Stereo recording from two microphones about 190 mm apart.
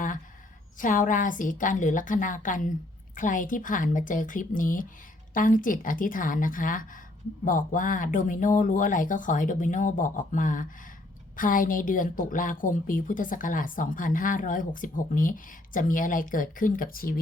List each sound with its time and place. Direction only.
0.8 s a woman's voice: 45° left (ahead or behind)